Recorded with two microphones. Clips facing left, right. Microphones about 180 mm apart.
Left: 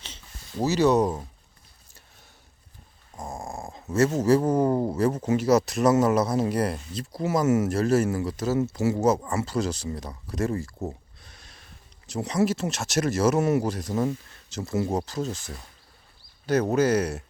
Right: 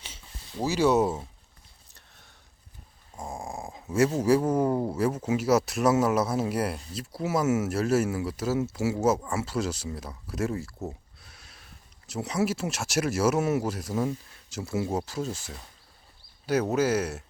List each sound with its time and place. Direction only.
0.0 s a sound: 10° right (ahead or behind)
0.7 s speech: 5° right (ahead or behind)
3.2 s dog: 10° right (ahead or behind)
3.9 s speech: 10° right (ahead or behind)
11.2 s a sound: 5° right (ahead or behind)
12.0 s speech: 5° right (ahead or behind)
16.7 s speech: 5° right (ahead or behind)